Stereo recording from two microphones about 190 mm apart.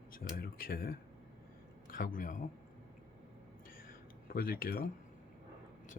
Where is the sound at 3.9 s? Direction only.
50° left (ahead or behind).